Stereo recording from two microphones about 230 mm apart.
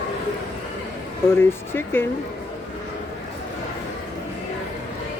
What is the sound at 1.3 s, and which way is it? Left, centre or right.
Speech, centre.